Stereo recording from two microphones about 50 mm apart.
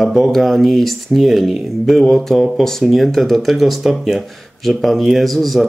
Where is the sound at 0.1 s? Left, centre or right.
Centre.